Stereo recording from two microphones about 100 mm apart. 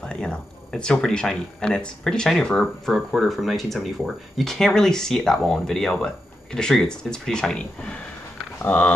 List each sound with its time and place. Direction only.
0.0 s speech: 10° left (ahead or behind)